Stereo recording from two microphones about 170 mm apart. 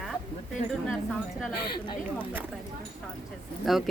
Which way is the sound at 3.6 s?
Centre (ahead or behind).